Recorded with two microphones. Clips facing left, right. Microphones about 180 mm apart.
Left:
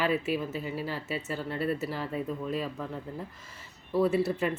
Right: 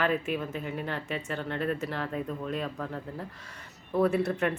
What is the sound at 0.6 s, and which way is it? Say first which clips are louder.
Speech: even; 60° right (ahead or behind).